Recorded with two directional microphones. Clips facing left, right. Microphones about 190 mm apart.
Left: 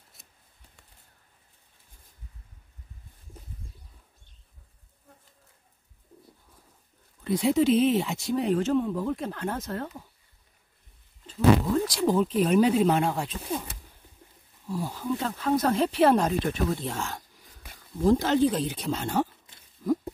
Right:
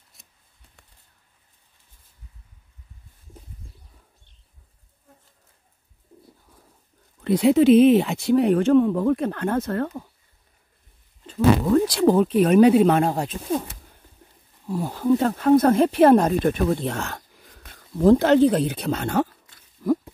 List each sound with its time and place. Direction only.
7.2 s speech: 65° right (ahead or behind)
11.2 s speech: 60° right (ahead or behind)
13.0 s speech: 40° right (ahead or behind)
14.7 s speech: 60° right (ahead or behind)
19.8 s a sound: 70° right (ahead or behind)